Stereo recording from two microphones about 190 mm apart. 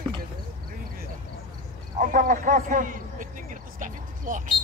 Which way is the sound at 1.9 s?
45° right (ahead or behind).